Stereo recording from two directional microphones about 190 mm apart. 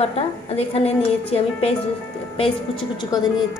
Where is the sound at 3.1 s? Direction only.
20° left (ahead or behind).